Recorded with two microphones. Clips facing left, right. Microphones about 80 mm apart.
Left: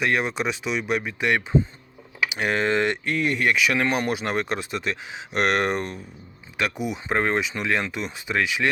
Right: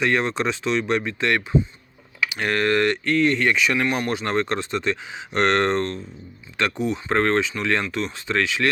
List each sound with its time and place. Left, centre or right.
0.0 s speech: centre